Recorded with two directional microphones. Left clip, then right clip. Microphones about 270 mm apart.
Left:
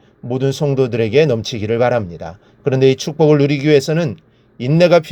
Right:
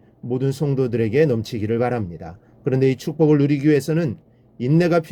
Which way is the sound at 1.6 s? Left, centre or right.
Centre.